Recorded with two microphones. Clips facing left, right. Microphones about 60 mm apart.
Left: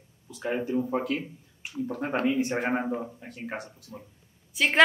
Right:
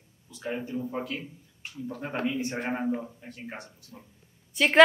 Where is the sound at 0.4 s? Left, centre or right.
Left.